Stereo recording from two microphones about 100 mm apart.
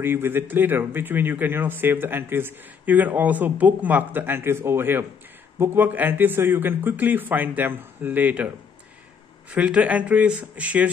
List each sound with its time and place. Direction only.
0.0 s a man's voice: 20° right (ahead or behind)
9.5 s speech: 15° right (ahead or behind)